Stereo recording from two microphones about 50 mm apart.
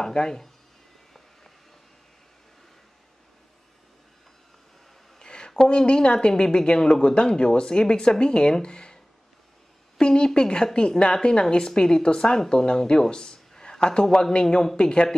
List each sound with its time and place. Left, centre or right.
0.0 s a woman's voice: centre
5.2 s a woman's voice: centre